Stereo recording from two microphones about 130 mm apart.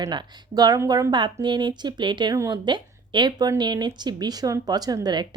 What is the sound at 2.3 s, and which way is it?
Speech, 25° right (ahead or behind).